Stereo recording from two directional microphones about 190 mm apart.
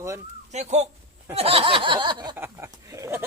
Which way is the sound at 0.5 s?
35° right (ahead or behind).